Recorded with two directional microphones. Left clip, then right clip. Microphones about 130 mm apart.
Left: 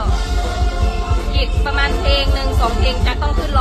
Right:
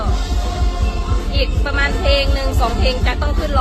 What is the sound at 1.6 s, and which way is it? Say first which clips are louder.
Music: left 1 dB; 10° right (ahead or behind).